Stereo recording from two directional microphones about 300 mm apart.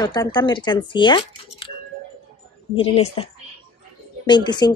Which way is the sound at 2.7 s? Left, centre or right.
Centre.